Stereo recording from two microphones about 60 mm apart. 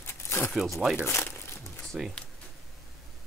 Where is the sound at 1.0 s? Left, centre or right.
Left.